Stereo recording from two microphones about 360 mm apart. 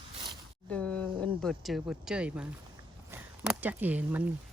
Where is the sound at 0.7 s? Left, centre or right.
Centre.